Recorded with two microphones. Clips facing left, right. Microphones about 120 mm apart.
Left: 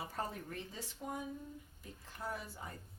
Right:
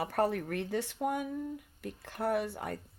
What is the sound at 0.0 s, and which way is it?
Speech, 70° right (ahead or behind).